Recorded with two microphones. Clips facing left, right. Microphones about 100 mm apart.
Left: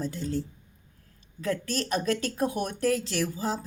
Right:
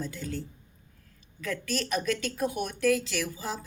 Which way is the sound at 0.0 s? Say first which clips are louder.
Left 5 dB; 30° left (ahead or behind).